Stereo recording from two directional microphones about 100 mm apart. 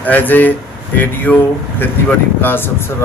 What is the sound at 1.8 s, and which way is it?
Speech, 20° left (ahead or behind).